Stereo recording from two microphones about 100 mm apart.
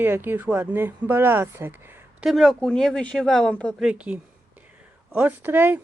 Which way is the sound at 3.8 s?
10° right (ahead or behind).